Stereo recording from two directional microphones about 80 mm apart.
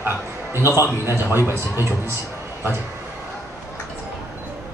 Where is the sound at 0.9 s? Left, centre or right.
Right.